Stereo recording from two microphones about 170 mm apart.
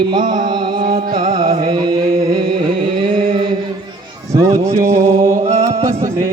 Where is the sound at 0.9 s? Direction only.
45° right (ahead or behind).